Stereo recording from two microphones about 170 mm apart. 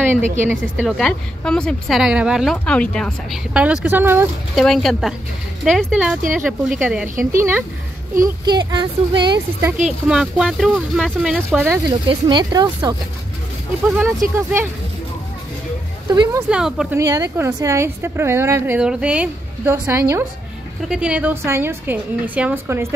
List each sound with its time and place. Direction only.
0.1 s a woman's voice: 45° right (ahead or behind)
0.7 s a woman's voice: centre (ahead or behind)
4.6 s a woman's voice: centre (ahead or behind); by 9.7 s 25° right (ahead or behind)
10.0 s a woman's voice: 5° right (ahead or behind)
12.1 s speech: 25° right (ahead or behind)
13.8 s a woman's voice: 5° right (ahead or behind)
16.1 s speech: 20° right (ahead or behind)
16.4 s a woman's voice: 5° right (ahead or behind)
17.0 s a woman's voice: 20° right (ahead or behind)